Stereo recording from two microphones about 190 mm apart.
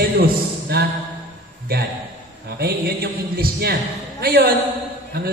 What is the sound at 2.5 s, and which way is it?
A man's voice, 55° right (ahead or behind).